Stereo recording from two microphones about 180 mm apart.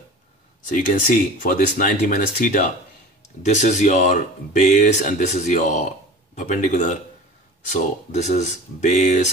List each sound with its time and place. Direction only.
0.6 s speech: 45° left (ahead or behind)